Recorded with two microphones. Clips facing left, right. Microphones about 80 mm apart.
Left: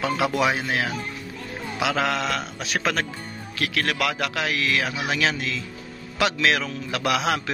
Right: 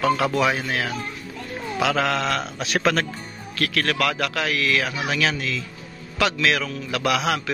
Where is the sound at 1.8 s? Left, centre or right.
Centre.